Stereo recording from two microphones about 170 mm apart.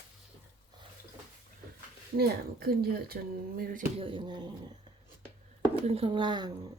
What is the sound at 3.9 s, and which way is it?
Speech, 30° right (ahead or behind).